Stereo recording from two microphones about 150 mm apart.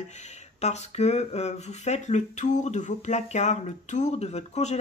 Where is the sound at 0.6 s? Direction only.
45° left (ahead or behind).